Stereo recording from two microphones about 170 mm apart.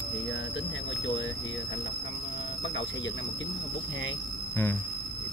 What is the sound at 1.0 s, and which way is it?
Speech, 90° left.